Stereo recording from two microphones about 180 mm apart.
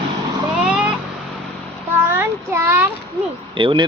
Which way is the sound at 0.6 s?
5° right (ahead or behind).